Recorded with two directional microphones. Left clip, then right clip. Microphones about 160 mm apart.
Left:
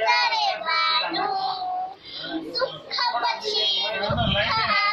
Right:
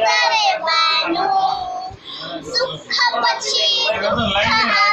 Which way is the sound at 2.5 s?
15° right (ahead or behind).